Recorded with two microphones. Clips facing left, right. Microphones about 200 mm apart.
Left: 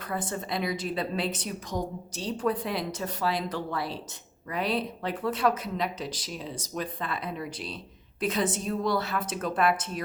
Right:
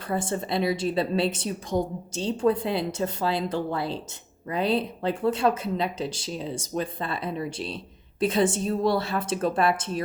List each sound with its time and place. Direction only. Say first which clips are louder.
0.1 s a woman's voice: right 5 dB; 25° right (ahead or behind)